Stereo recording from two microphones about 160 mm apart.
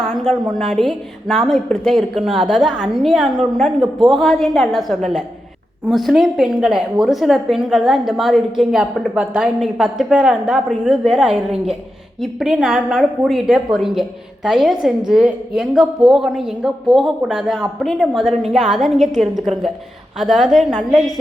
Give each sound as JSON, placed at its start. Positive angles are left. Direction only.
{"t": 0.0, "sound": "a woman's voice", "side_deg": 0}